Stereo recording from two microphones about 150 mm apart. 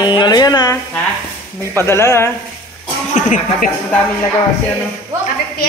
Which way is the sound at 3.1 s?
55° left (ahead or behind).